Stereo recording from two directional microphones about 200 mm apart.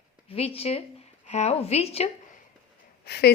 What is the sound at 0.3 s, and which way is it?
A woman's voice, 30° left (ahead or behind).